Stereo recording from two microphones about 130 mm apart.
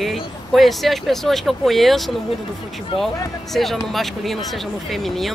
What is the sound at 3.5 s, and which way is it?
Speech, centre (ahead or behind).